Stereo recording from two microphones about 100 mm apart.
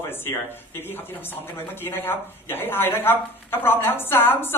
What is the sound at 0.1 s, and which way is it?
Speech, 20° left (ahead or behind).